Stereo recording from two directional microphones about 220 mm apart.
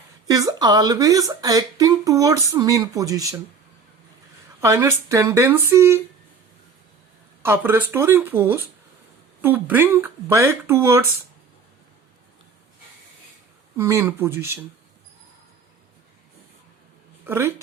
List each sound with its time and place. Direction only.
0.3 s speech: 15° right (ahead or behind)
4.6 s speech: 10° right (ahead or behind)
7.4 s speech: 10° right (ahead or behind)
13.7 s speech: 10° right (ahead or behind)
17.2 s speech: 10° right (ahead or behind)